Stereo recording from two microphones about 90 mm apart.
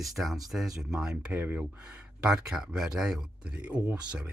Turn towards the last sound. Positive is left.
turn(degrees=-15)  # may be behind; listen again after turning